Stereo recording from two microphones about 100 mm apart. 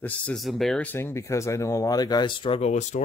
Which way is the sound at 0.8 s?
25° left (ahead or behind).